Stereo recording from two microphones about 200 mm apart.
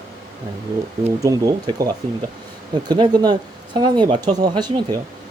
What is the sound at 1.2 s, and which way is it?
Speech, 15° right (ahead or behind).